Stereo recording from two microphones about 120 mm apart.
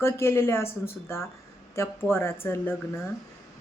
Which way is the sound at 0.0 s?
20° left (ahead or behind).